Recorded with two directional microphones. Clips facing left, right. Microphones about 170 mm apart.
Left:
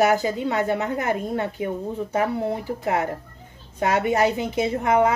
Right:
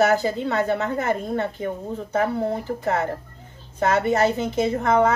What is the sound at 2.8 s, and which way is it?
Speech, 15° left (ahead or behind).